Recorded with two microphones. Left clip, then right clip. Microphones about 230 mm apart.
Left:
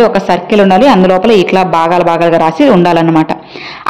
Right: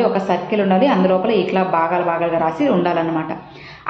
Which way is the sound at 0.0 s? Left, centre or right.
Left.